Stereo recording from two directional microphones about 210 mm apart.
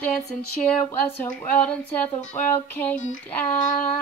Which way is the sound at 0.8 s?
10° left (ahead or behind).